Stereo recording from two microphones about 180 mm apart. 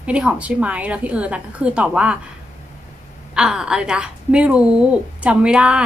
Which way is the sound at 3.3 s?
5° right (ahead or behind).